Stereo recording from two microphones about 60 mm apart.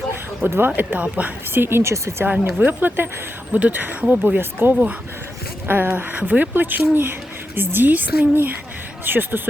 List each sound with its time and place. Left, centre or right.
0.4 s speech: right
0.8 s speech: right
1.5 s speech: right
2.6 s speech: right
4.7 s speech: centre
5.6 s speech: right